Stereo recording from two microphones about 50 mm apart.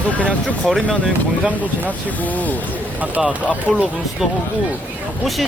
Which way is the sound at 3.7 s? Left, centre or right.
Centre.